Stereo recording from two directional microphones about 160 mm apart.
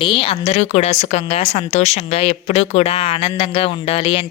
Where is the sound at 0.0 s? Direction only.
30° left (ahead or behind).